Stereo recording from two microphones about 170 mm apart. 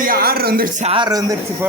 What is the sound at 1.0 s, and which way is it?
Speech, 20° right (ahead or behind).